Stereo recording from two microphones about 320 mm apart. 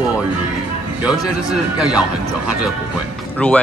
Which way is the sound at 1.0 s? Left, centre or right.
Centre.